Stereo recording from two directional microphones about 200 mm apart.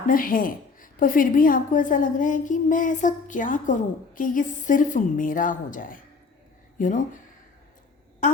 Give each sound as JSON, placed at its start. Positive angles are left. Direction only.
{"t": 0.1, "sound": "a woman's voice", "side_deg": 45}